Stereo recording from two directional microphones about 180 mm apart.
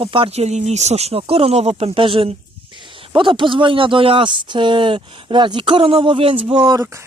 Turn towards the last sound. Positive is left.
turn(degrees=-15)  # may be behind; listen again after turning